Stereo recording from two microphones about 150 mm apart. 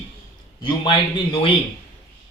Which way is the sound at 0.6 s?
35° left (ahead or behind).